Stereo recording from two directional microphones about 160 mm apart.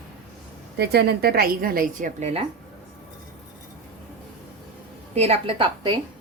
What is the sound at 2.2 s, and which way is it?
Speech, 45° right (ahead or behind).